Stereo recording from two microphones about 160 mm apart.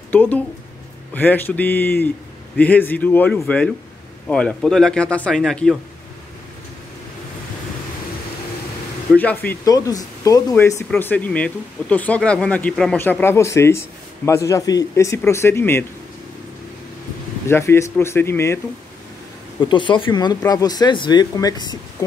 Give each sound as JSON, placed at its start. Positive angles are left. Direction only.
{"t": 0.1, "sound": "speech", "side_deg": 10}
{"t": 9.1, "sound": "speech", "side_deg": 10}
{"t": 9.7, "sound": "speech", "side_deg": 20}
{"t": 17.5, "sound": "speech", "side_deg": 15}
{"t": 19.6, "sound": "speech", "side_deg": 30}